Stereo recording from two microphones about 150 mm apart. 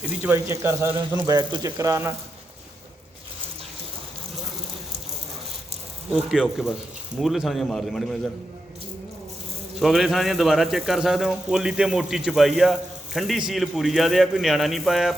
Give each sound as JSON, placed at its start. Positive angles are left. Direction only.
{"t": 0.1, "sound": "speech", "side_deg": -15}
{"t": 1.3, "sound": "speech", "side_deg": -30}
{"t": 6.2, "sound": "speech", "side_deg": -5}
{"t": 9.8, "sound": "speech", "side_deg": 0}